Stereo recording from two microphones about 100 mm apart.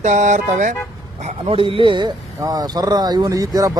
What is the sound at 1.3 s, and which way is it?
Speech, 65° right (ahead or behind).